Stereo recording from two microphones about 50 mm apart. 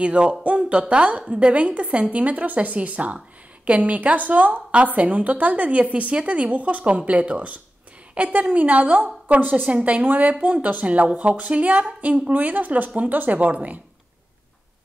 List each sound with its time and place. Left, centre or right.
0.0 s a woman's voice: right